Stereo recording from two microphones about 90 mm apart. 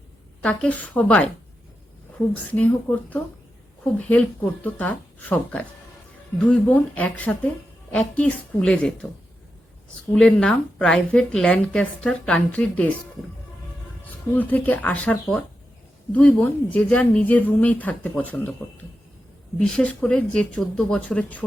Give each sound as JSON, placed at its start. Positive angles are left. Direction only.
{"t": 0.4, "sound": "a woman's voice", "side_deg": 15}
{"t": 2.3, "sound": "a woman's voice", "side_deg": 20}
{"t": 10.1, "sound": "a woman's voice", "side_deg": 10}
{"t": 14.3, "sound": "a woman's voice", "side_deg": 20}
{"t": 19.5, "sound": "a woman's voice", "side_deg": 10}